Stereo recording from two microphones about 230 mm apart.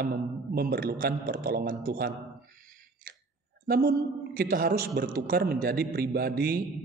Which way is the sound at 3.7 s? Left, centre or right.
Right.